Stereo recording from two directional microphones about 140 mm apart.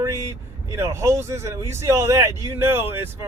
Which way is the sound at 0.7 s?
20° right (ahead or behind).